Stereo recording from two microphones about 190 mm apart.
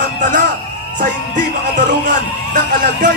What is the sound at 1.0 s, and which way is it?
Music, 45° right (ahead or behind).